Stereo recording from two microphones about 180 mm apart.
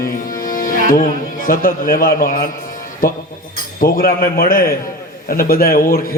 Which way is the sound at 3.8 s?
55° left (ahead or behind).